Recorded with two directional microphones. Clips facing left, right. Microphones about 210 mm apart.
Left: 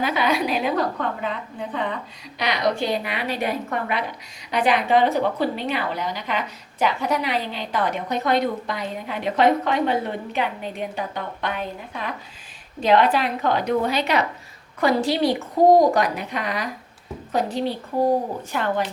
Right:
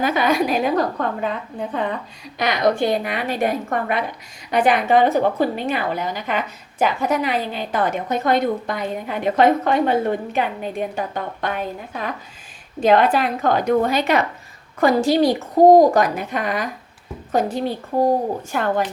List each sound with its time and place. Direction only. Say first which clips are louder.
0.0 s a woman's voice: right 3 dB; 45° right (ahead or behind)